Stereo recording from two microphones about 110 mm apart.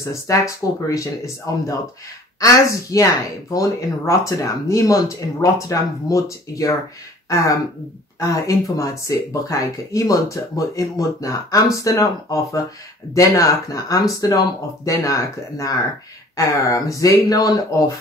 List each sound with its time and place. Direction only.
0.3 s speech: 30° left (ahead or behind)